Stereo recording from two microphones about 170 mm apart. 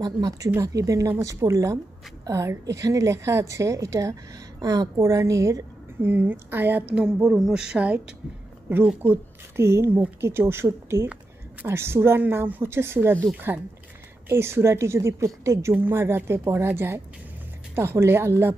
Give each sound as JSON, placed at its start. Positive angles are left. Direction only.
{"t": 0.0, "sound": "a woman's voice", "side_deg": -20}